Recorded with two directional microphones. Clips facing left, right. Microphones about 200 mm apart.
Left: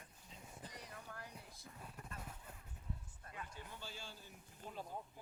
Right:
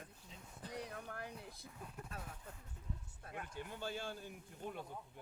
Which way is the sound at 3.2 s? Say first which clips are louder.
Right 5 dB; 65° right (ahead or behind).